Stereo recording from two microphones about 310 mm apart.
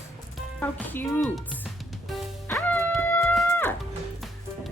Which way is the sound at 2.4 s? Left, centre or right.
Centre.